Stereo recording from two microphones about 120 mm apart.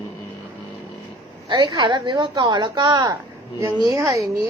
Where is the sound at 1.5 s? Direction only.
35° right (ahead or behind).